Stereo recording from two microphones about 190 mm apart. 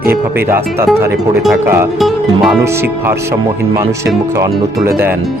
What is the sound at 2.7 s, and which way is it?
Speech, 10° right (ahead or behind).